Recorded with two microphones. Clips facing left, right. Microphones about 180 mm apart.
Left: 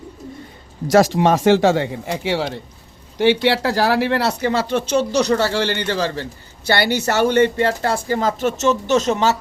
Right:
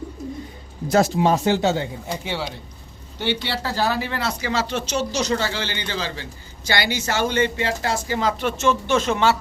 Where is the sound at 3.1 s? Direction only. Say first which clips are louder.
Left 10 dB; 90° left.